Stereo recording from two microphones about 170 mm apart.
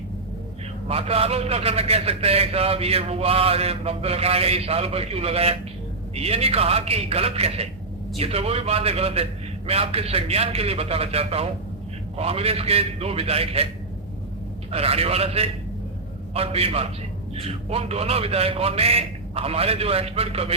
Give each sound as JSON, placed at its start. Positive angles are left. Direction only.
{"t": 0.9, "sound": "a man's voice", "side_deg": -35}
{"t": 14.7, "sound": "a man's voice", "side_deg": -35}